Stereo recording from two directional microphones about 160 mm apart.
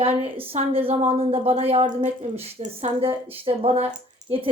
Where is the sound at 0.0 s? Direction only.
35° right (ahead or behind).